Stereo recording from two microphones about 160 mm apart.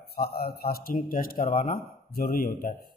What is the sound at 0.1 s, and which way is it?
A man's voice, 75° left (ahead or behind).